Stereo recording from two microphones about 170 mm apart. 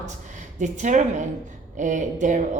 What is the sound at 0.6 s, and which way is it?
A woman's voice, 45° right (ahead or behind).